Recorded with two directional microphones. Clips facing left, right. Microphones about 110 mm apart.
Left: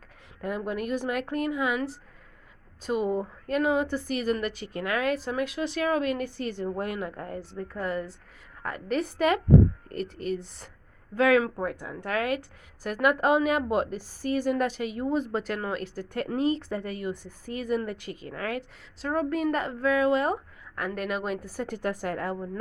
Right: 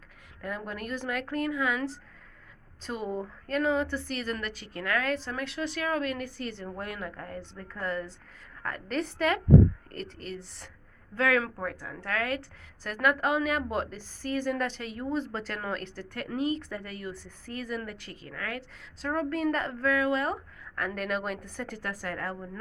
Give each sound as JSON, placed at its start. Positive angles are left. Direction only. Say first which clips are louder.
{"t": 0.4, "sound": "a woman's voice", "louder": "left 6 dB", "side_deg": 15}
{"t": 16.1, "sound": "a woman's voice", "louder": "left 4 dB", "side_deg": 30}
{"t": 19.0, "sound": "a woman's voice", "louder": "left 2 dB", "side_deg": 10}
{"t": 20.7, "sound": "a woman's voice", "louder": "left 1 dB", "side_deg": 5}
{"t": 21.7, "sound": "a woman's voice", "louder": "left 8 dB", "side_deg": 20}